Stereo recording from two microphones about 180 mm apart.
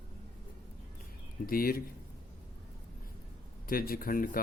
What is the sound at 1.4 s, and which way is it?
Speech, 55° left (ahead or behind).